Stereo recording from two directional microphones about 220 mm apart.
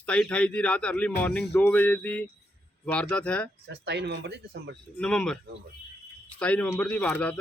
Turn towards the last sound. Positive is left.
turn(degrees=10)  # may be behind; listen again after turning